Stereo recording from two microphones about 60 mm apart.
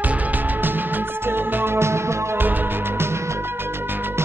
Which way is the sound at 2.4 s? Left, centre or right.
Right.